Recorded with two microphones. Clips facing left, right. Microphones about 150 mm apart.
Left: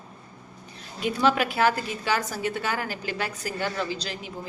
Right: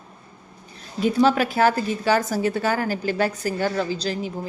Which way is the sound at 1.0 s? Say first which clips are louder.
Right 5 dB; 35° right (ahead or behind).